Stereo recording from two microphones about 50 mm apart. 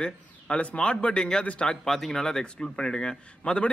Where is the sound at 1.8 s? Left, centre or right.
Centre.